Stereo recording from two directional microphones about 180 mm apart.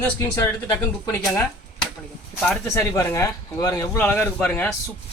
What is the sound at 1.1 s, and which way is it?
A man's voice, 15° left (ahead or behind).